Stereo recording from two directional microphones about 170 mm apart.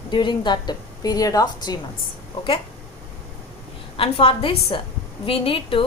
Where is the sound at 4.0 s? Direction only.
35° left (ahead or behind).